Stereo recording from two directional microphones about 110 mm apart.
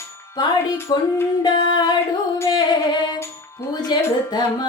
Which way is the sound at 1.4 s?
40° left (ahead or behind).